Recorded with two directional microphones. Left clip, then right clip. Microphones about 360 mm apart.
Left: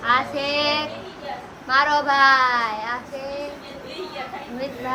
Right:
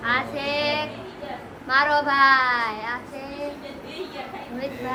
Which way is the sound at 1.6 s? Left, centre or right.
Centre.